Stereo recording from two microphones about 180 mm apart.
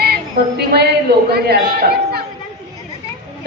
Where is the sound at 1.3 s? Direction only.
60° right (ahead or behind).